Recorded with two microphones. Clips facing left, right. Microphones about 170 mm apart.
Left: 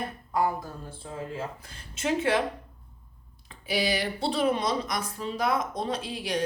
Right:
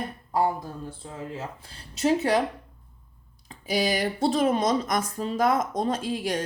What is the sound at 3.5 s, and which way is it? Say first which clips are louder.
Speech: right 2 dB; 45° right (ahead or behind).